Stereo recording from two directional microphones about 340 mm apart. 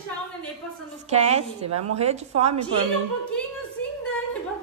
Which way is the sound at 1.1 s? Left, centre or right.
Centre.